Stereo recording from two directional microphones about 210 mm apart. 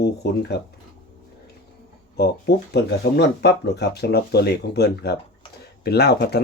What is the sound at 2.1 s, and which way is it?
Speech, 50° left (ahead or behind).